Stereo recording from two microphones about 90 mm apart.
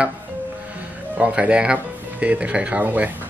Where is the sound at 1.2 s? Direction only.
10° right (ahead or behind).